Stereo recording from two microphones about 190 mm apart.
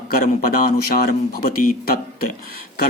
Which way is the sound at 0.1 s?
50° left (ahead or behind).